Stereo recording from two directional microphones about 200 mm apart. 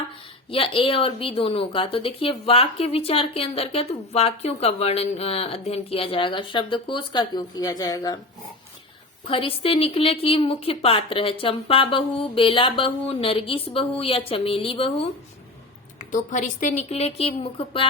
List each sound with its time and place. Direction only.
0.5 s a woman's voice: 25° left (ahead or behind)
9.2 s a woman's voice: 25° left (ahead or behind)
16.0 s a woman's voice: 40° left (ahead or behind)